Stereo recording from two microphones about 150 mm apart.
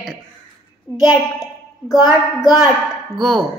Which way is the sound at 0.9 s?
20° left (ahead or behind).